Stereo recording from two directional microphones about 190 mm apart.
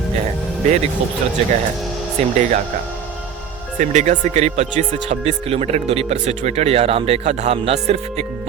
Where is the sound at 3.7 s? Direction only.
40° right (ahead or behind).